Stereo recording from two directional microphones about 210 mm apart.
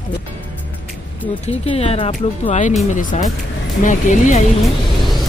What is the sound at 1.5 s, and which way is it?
Speech, 30° left (ahead or behind).